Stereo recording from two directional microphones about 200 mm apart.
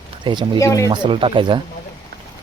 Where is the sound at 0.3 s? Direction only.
25° right (ahead or behind).